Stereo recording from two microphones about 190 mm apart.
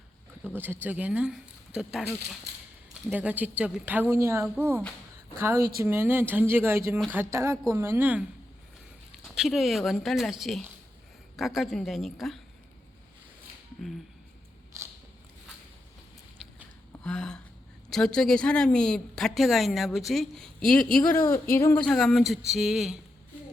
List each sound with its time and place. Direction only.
0.5 s speech: 10° right (ahead or behind)
5.8 s speech: 10° right (ahead or behind)
9.2 s a woman's voice: centre (ahead or behind)
14.7 s scissors: 15° right (ahead or behind)
17.0 s a sound: 5° left (ahead or behind)
17.9 s a woman's voice: 5° left (ahead or behind)
21.2 s speech: 15° left (ahead or behind)
21.8 s a woman's voice: centre (ahead or behind)